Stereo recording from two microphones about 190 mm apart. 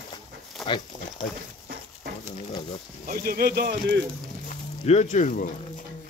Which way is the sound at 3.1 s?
50° right (ahead or behind).